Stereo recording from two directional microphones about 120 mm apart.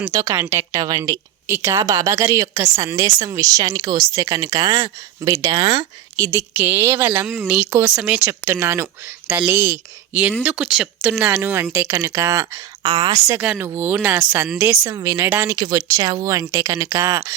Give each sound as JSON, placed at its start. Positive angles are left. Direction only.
{"t": 0.0, "sound": "a woman's voice", "side_deg": -25}
{"t": 8.3, "sound": "a woman's voice", "side_deg": -20}
{"t": 12.8, "sound": "a woman's voice", "side_deg": -40}
{"t": 13.4, "sound": "speech", "side_deg": -10}
{"t": 14.9, "sound": "a woman's voice", "side_deg": -25}
{"t": 15.5, "sound": "a woman's voice", "side_deg": -40}